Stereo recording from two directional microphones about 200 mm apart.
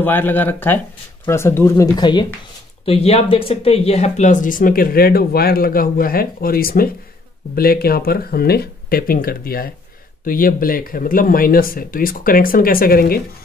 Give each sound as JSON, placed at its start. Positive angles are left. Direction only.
{"t": 0.0, "sound": "speech", "side_deg": 10}